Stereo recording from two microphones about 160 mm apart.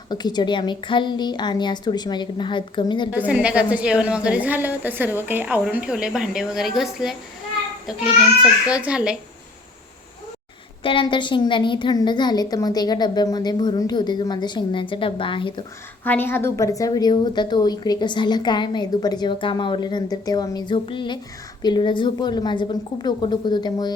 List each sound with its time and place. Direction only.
0.1 s a woman's voice: 25° left (ahead or behind)
3.1 s a woman's voice: 10° right (ahead or behind)
10.8 s a woman's voice: 30° left (ahead or behind)
16.0 s a woman's voice: 15° left (ahead or behind)